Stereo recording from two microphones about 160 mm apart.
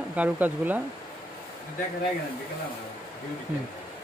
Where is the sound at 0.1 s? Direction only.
10° right (ahead or behind).